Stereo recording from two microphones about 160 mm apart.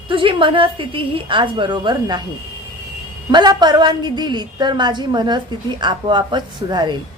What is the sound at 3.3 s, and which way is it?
A woman's voice, 25° right (ahead or behind).